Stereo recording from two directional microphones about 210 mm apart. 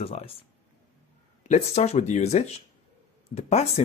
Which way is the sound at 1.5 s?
30° left (ahead or behind).